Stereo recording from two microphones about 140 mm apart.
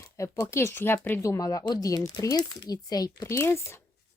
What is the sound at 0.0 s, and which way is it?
Speech, 20° left (ahead or behind).